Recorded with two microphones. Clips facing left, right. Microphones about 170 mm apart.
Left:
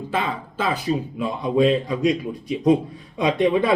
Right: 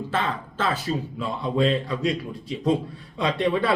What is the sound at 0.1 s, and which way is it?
Speech, 10° left (ahead or behind).